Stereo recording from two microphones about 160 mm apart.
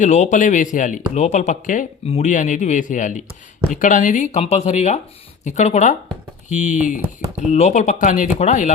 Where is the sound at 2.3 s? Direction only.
50° left (ahead or behind).